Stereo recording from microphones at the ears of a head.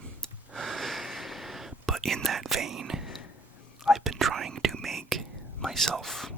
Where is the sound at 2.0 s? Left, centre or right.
Right.